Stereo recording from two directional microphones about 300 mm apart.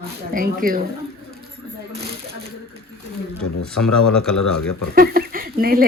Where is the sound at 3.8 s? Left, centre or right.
Left.